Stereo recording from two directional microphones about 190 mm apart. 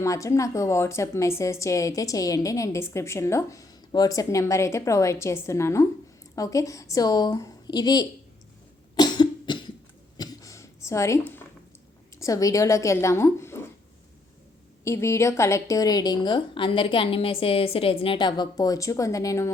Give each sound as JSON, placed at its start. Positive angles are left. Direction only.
{"t": 0.0, "sound": "a woman's voice", "side_deg": 15}
{"t": 9.0, "sound": "cough", "side_deg": 20}
{"t": 10.2, "sound": "a sound", "side_deg": 15}
{"t": 12.1, "sound": "a woman's voice", "side_deg": 15}
{"t": 14.8, "sound": "a woman's voice", "side_deg": 15}